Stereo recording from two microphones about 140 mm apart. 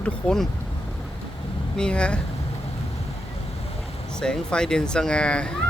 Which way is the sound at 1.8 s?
5° left (ahead or behind).